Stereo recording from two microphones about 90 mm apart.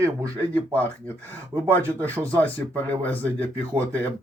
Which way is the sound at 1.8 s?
20° left (ahead or behind).